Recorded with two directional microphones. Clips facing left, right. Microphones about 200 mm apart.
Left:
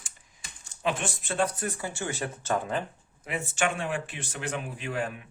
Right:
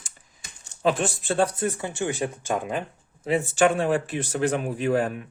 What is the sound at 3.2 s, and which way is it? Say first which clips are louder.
Speech: right 9 dB; 35° right (ahead or behind).